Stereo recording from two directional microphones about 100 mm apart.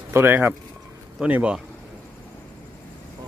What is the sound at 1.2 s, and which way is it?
Speech, 10° right (ahead or behind).